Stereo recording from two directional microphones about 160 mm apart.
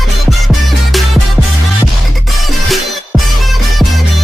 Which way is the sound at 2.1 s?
Centre (ahead or behind).